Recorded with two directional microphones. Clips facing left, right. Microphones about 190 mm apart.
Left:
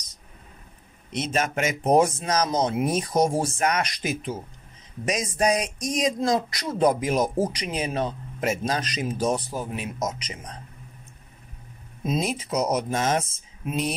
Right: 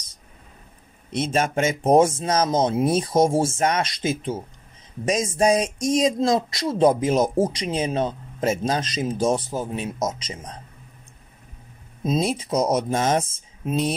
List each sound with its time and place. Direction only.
1.1 s speech: 30° right (ahead or behind)
12.0 s speech: 30° right (ahead or behind)